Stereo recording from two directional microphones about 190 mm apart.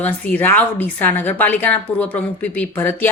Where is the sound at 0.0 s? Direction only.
10° left (ahead or behind).